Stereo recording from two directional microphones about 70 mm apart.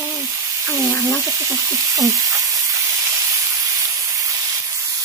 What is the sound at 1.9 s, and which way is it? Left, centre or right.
Sizzle, right.